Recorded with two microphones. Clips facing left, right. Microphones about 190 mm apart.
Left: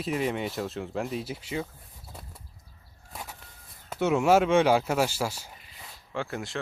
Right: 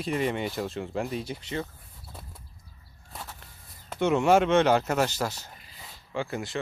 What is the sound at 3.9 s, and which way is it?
Speech, 5° left (ahead or behind).